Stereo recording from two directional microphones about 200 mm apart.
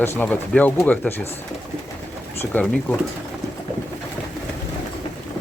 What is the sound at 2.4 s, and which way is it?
Speech, 10° left (ahead or behind).